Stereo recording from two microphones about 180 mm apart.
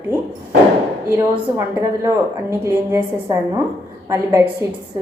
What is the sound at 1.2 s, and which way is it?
A woman's voice, 15° right (ahead or behind).